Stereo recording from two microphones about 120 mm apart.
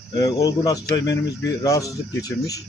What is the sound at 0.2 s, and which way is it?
A man's voice, 30° left (ahead or behind).